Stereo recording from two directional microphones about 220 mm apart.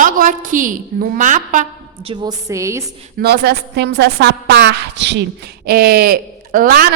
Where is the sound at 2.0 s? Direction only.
20° right (ahead or behind).